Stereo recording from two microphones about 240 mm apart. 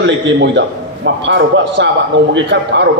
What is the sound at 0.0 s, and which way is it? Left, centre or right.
A man's voice, right.